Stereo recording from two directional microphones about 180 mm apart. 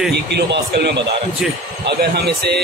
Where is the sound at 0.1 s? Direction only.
65° right (ahead or behind).